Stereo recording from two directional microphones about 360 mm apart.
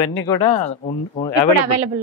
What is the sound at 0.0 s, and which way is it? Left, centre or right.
Speech, left.